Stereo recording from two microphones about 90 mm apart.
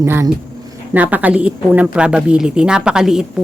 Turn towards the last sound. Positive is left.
turn(degrees=-5)  # may be behind; listen again after turning